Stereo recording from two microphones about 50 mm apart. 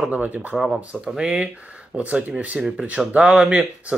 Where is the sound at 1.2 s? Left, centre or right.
Centre.